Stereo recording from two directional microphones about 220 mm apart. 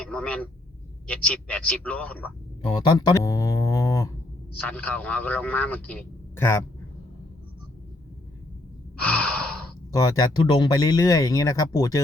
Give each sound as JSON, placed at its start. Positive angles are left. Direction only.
{"t": 0.1, "sound": "speech", "side_deg": 5}
{"t": 2.7, "sound": "speech", "side_deg": 20}
{"t": 9.0, "sound": "gasp", "side_deg": 5}
{"t": 9.9, "sound": "speech", "side_deg": 15}